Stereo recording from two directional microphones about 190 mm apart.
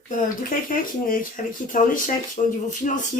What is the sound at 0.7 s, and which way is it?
A woman's voice, 45° left (ahead or behind).